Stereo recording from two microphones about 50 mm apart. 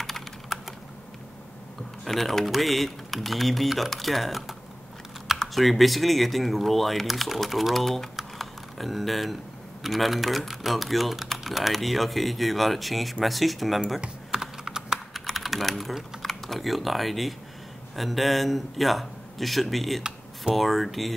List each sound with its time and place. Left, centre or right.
2.0 s speech: centre
8.2 s typing: centre
9.8 s speech: centre
14.0 s computer keyboard: centre
15.3 s speech: centre